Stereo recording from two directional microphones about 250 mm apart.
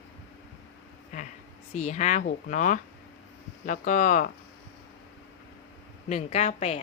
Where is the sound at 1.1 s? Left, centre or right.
Left.